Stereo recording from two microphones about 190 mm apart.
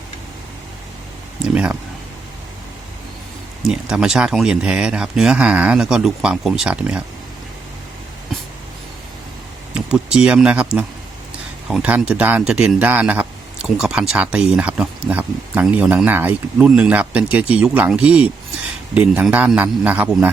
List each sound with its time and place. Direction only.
3.7 s speech: 5° right (ahead or behind)
9.7 s speech: 5° right (ahead or behind)